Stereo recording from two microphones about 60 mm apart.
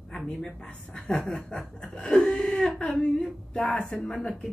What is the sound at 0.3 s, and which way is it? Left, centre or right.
A woman's voice, centre.